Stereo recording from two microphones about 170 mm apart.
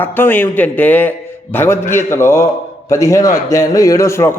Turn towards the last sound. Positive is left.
turn(degrees=15)  # may be behind; listen again after turning